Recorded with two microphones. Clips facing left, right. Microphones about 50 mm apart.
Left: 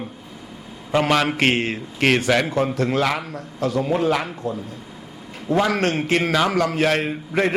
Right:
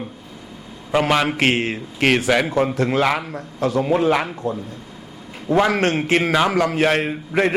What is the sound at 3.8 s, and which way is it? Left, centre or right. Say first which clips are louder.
A man's voice: right 3 dB; right.